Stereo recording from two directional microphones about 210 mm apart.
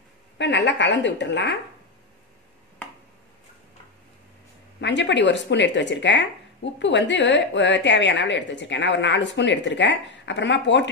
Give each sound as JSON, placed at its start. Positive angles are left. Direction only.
{"t": 0.4, "sound": "speech", "side_deg": 55}
{"t": 4.7, "sound": "speech", "side_deg": 55}